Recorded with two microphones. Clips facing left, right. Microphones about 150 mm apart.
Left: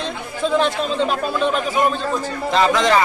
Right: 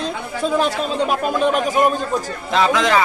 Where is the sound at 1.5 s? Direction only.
45° right (ahead or behind).